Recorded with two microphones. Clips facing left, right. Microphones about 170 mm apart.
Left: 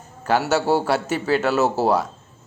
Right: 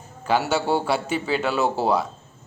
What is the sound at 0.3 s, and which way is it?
A man's voice, 5° left (ahead or behind).